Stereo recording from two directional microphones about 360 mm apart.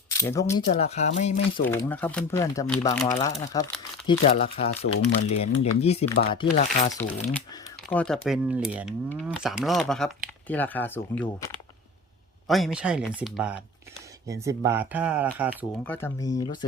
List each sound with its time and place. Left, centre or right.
0.2 s speech: centre
1.6 s speech: centre
3.0 s speech: centre
7.9 s speech: centre